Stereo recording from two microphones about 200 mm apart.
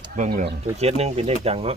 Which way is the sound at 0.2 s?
45° right (ahead or behind).